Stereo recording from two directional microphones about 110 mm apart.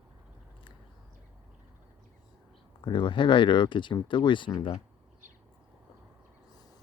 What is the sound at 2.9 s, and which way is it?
Speech, 45° left (ahead or behind).